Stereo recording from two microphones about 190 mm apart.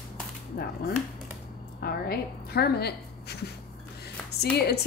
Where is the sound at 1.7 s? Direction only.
55° left (ahead or behind).